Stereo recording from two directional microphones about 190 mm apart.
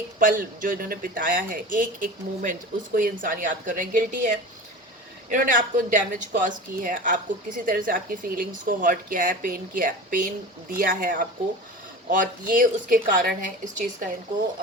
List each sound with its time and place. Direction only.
0.2 s speech: 45° right (ahead or behind)